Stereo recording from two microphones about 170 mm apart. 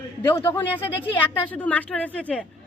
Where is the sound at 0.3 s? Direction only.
15° left (ahead or behind).